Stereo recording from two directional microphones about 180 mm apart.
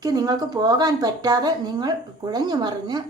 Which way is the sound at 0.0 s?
20° right (ahead or behind).